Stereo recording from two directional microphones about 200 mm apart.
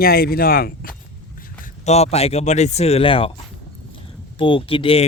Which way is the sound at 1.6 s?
30° left (ahead or behind).